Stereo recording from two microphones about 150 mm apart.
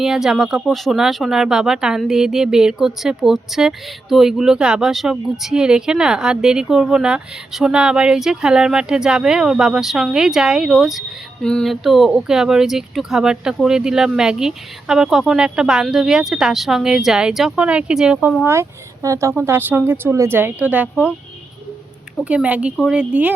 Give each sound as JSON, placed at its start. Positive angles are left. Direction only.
{"t": 0.0, "sound": "speech", "side_deg": -5}
{"t": 18.4, "sound": "speech", "side_deg": -20}
{"t": 22.2, "sound": "speech", "side_deg": -10}